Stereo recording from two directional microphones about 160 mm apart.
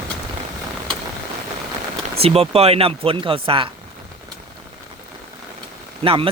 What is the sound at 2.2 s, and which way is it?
Speech, 40° right (ahead or behind).